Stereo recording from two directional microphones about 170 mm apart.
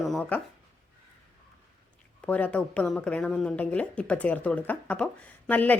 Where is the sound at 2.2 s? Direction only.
5° left (ahead or behind).